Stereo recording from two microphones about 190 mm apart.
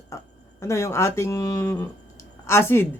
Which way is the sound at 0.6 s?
15° left (ahead or behind).